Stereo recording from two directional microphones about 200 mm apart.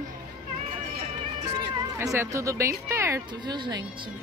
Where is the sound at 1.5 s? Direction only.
15° right (ahead or behind).